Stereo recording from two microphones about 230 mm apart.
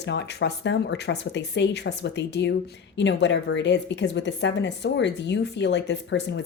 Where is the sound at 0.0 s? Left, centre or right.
Left.